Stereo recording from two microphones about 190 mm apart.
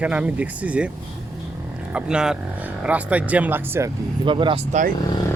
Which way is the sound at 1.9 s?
5° right (ahead or behind).